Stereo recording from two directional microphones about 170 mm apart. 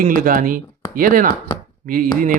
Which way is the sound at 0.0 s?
55° right (ahead or behind).